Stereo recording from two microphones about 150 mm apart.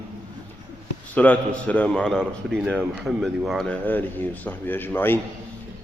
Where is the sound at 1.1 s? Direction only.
10° left (ahead or behind).